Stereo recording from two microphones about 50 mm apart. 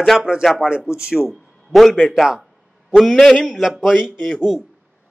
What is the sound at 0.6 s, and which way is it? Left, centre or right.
Speech, centre.